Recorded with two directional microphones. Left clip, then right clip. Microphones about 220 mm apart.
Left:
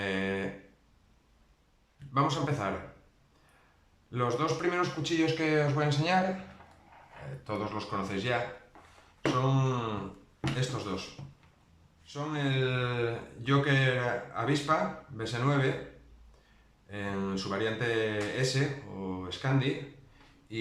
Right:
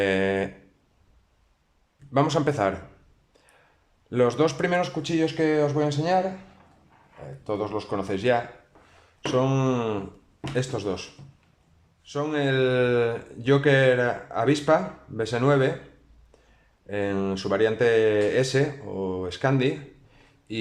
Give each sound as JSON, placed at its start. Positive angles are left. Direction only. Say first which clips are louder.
{"t": 0.0, "sound": "a sound", "louder": "right 10 dB", "side_deg": -45}
{"t": 2.1, "sound": "speech", "louder": "right 7 dB", "side_deg": -40}
{"t": 4.1, "sound": "speech", "louder": "right 8 dB", "side_deg": -40}
{"t": 7.4, "sound": "speech", "louder": "right 7 dB", "side_deg": -30}
{"t": 9.4, "sound": "speech", "louder": "right 7 dB", "side_deg": -40}
{"t": 12.0, "sound": "speech", "louder": "right 9 dB", "side_deg": -40}
{"t": 16.9, "sound": "speech", "louder": "right 9 dB", "side_deg": -40}